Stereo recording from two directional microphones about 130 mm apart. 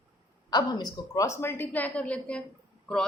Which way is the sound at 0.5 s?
30° left (ahead or behind).